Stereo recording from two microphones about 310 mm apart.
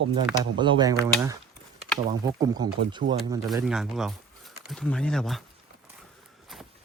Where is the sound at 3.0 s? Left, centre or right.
Right.